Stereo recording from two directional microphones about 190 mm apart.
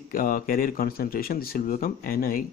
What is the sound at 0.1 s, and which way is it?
Speech, 45° left (ahead or behind).